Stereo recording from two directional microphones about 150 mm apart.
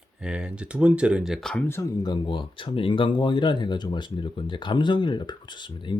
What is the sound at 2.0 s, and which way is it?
Speech, 30° left (ahead or behind).